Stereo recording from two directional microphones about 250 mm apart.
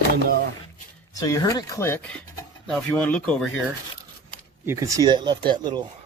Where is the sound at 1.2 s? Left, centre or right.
Centre.